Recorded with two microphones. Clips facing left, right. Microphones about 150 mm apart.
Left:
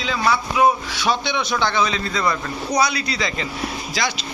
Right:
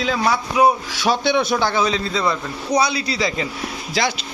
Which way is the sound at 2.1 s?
20° right (ahead or behind).